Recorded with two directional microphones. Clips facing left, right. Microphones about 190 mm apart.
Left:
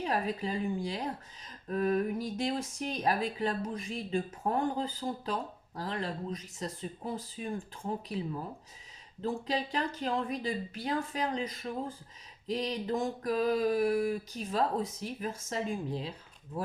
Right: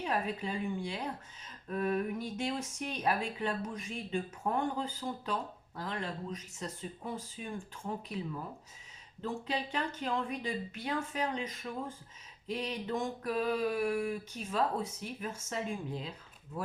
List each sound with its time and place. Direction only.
0.0 s speech: 35° left (ahead or behind)